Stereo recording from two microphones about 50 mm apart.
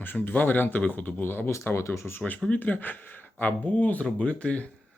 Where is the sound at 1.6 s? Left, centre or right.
Left.